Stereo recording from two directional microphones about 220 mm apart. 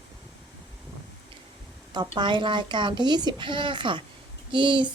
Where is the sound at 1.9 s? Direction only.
20° right (ahead or behind).